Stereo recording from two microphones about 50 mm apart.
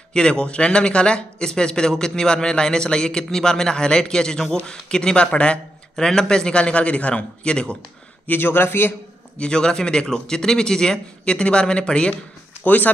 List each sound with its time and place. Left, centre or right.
0.1 s a man's voice: centre
5.9 s a man's voice: centre
8.3 s speech: left
9.4 s speech: centre
12.6 s speech: left